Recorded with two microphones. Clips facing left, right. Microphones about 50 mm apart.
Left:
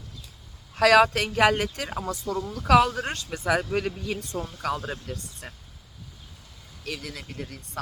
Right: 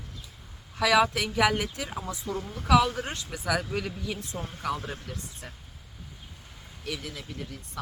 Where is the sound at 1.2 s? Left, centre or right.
Left.